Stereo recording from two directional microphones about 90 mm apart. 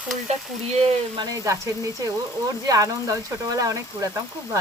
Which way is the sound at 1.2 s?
40° right (ahead or behind).